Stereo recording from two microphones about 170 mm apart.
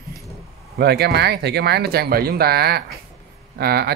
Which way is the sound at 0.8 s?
70° right (ahead or behind).